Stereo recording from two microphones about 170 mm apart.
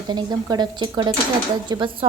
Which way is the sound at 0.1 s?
25° right (ahead or behind).